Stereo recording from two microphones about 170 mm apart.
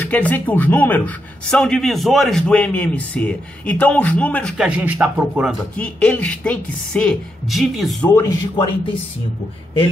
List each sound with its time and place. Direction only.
0.0 s speech: 10° left (ahead or behind)
4.6 s speech: 10° right (ahead or behind)
5.8 s speech: 5° left (ahead or behind)
8.1 s speech: 15° left (ahead or behind)